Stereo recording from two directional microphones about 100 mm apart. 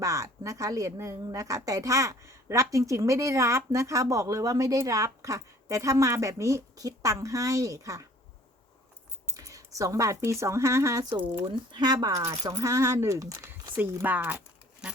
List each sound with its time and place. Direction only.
0.0 s a woman's voice: 30° right (ahead or behind)
9.3 s speech: 35° right (ahead or behind)
11.7 s a woman's voice: 45° right (ahead or behind)
14.0 s speech: 20° right (ahead or behind)